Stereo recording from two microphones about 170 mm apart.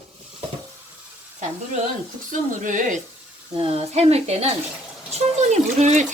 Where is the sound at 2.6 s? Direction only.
50° right (ahead or behind).